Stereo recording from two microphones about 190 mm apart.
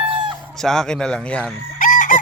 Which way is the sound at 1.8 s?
45° left (ahead or behind).